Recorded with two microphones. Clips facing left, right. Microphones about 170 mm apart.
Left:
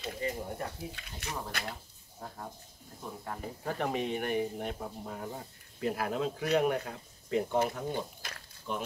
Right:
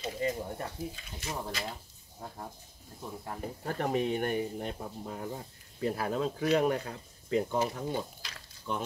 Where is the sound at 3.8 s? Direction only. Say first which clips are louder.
Right 3 dB; 45° right (ahead or behind).